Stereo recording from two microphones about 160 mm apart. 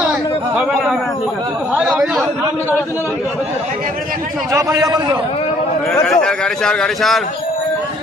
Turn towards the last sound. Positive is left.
turn(degrees=0)  # may be behind; listen again after turning